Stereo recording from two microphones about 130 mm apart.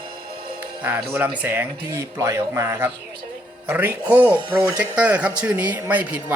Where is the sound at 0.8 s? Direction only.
10° right (ahead or behind).